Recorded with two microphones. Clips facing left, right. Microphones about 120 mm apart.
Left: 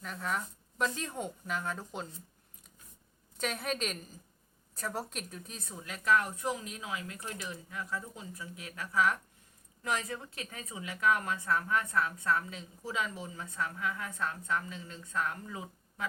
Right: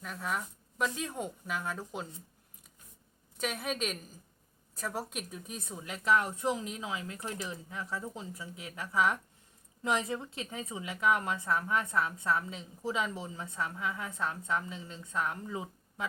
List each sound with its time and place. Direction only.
0.0 s speech: 5° right (ahead or behind)
3.3 s a woman's voice: 5° right (ahead or behind); by 16.0 s 20° right (ahead or behind)